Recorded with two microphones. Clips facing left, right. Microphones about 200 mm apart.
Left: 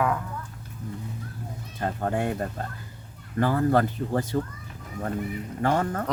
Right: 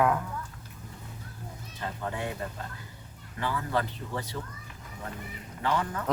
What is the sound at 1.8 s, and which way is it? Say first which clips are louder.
Speech: left 7 dB; 50° left (ahead or behind).